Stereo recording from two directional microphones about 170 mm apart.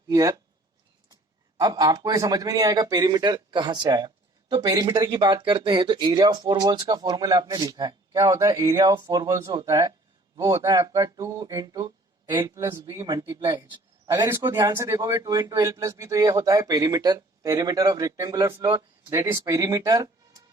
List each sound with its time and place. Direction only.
0.1 s speech: 20° right (ahead or behind)
1.5 s speech: 25° right (ahead or behind)